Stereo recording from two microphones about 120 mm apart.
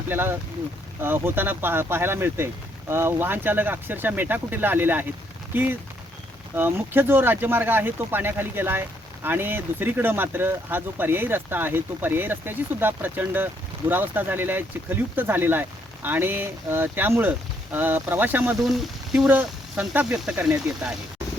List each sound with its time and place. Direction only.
0.1 s speech: 20° right (ahead or behind)
18.7 s speech: 5° right (ahead or behind)
19.3 s speech: 15° right (ahead or behind)